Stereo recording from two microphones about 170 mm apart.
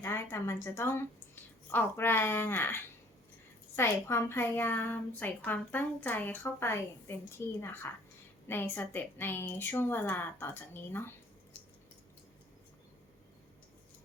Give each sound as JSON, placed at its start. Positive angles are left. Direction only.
{"t": 0.0, "sound": "a woman's voice", "side_deg": 15}